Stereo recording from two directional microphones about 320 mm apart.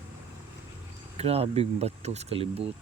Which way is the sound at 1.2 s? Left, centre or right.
Centre.